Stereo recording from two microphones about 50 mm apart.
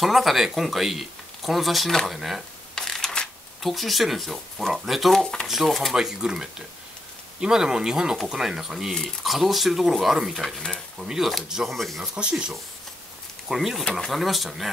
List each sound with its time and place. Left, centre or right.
0.0 s speech: centre
2.7 s a sound: centre
3.6 s speech: centre
5.9 s speech: centre
10.4 s speech: centre
11.0 s speech: centre
11.7 s speech: centre
12.0 s speech: centre
13.5 s speech: centre